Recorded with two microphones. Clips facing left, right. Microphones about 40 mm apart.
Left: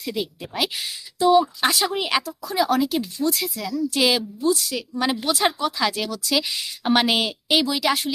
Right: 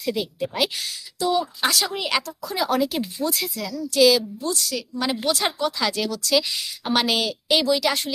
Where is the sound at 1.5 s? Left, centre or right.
Centre.